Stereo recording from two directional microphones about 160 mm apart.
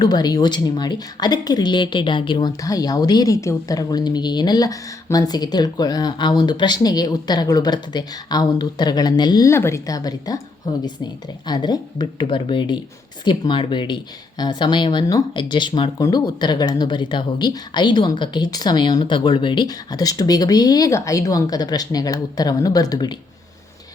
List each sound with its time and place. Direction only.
0.0 s speech: 25° left (ahead or behind)